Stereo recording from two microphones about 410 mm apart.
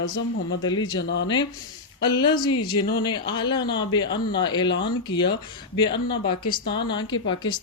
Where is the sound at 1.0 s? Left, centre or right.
Left.